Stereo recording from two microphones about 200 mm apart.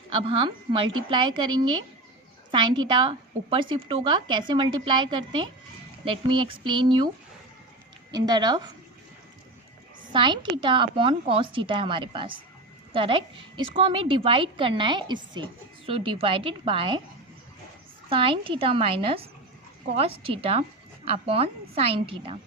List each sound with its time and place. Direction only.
0.3 s a woman's voice: 25° right (ahead or behind)
8.1 s a woman's voice: 20° right (ahead or behind)
10.1 s a woman's voice: 25° right (ahead or behind)
18.1 s a woman's voice: 25° right (ahead or behind)